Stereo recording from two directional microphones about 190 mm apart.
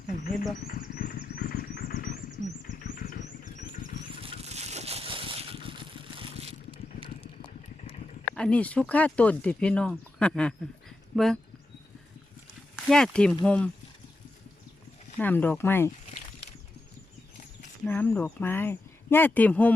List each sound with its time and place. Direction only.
0.6 s vehicle: 50° left (ahead or behind)
4.2 s vehicle: 30° right (ahead or behind)
7.8 s a sound: 35° left (ahead or behind)
8.4 s speech: 5° left (ahead or behind)
12.7 s speech: 5° left (ahead or behind)
15.2 s speech: 10° left (ahead or behind)
17.8 s speech: 10° left (ahead or behind)